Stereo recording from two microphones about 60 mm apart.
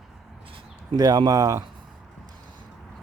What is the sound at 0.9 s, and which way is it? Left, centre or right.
Speech, right.